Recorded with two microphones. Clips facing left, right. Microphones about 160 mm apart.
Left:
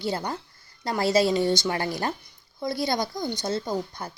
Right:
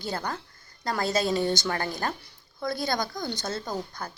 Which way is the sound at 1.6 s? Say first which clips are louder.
Left 2 dB; 20° left (ahead or behind).